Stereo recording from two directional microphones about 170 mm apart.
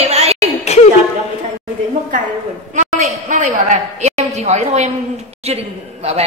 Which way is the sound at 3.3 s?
45° right (ahead or behind).